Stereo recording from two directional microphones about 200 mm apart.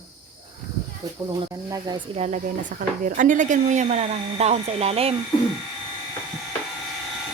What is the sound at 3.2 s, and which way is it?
Speech, 40° right (ahead or behind).